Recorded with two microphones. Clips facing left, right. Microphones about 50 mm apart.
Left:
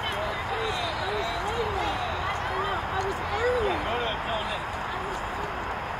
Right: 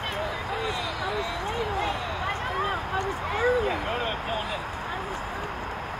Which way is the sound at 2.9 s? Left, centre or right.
Right.